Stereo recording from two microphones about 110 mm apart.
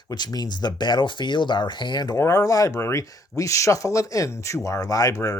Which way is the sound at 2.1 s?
30° left (ahead or behind).